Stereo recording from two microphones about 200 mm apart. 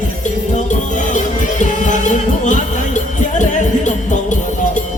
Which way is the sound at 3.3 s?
40° left (ahead or behind).